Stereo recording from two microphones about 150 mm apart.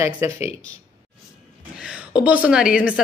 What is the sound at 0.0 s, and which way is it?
Speech, 15° right (ahead or behind).